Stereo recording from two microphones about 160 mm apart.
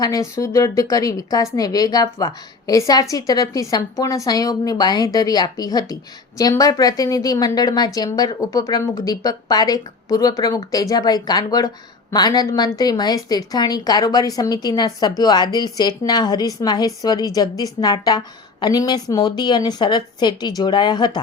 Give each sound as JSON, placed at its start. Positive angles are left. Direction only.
{"t": 0.0, "sound": "a woman's voice", "side_deg": 20}